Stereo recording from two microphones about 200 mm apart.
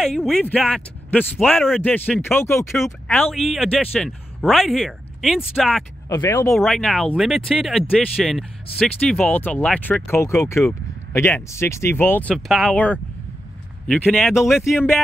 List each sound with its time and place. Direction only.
0.0 s speech: centre (ahead or behind)
6.0 s speech: 20° left (ahead or behind)
6.5 s speech: centre (ahead or behind)